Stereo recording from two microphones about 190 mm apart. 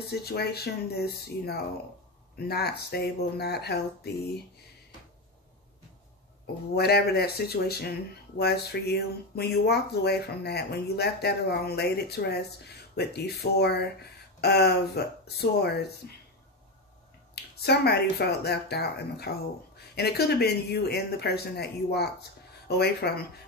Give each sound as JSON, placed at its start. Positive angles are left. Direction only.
{"t": 0.1, "sound": "speech", "side_deg": 55}
{"t": 6.4, "sound": "speech", "side_deg": 55}
{"t": 17.4, "sound": "speech", "side_deg": 60}